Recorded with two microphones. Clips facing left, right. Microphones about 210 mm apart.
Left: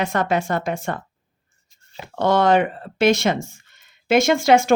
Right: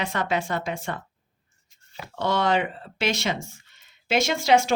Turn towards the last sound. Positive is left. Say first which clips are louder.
# left 5 dB
turn(degrees=50)  # may be behind; listen again after turning